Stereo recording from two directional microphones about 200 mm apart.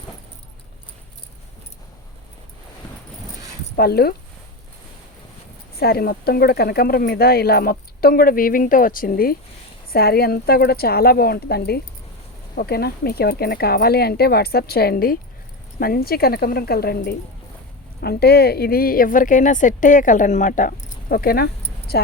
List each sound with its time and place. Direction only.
3.8 s speech: 50° left (ahead or behind)
5.7 s speech: 50° left (ahead or behind)